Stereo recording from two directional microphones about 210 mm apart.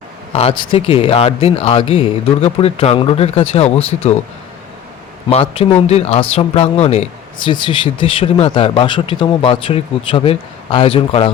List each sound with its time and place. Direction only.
0.3 s speech: 25° left (ahead or behind)
5.3 s speech: 25° left (ahead or behind)